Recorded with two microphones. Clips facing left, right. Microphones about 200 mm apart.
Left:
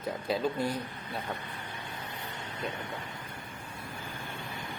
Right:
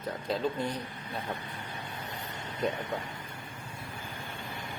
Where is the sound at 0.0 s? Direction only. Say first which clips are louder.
Left 1 dB; 10° left (ahead or behind).